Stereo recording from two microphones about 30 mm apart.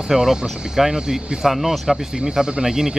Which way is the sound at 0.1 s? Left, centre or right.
Centre.